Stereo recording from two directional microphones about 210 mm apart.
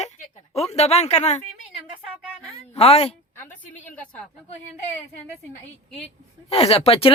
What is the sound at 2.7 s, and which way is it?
Speech, 30° left (ahead or behind).